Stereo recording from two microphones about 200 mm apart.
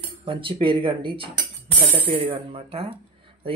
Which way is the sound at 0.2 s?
25° right (ahead or behind).